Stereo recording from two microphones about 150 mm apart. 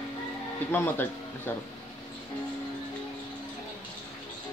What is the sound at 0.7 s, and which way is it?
Speech, 15° left (ahead or behind).